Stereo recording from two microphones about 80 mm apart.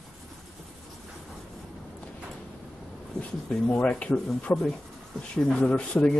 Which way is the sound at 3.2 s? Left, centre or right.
Centre.